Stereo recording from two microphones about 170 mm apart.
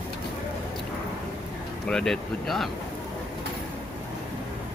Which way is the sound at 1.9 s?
5° left (ahead or behind).